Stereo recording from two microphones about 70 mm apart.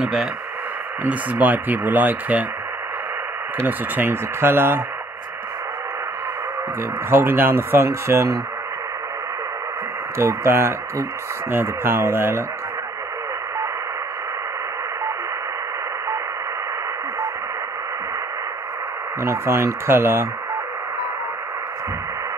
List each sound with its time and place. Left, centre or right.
0.0 s speech: centre
1.0 s speech: right
3.5 s speech: right
7.1 s speech: right
10.1 s speech: right
19.2 s speech: right